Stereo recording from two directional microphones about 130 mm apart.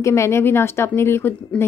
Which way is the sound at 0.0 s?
20° left (ahead or behind).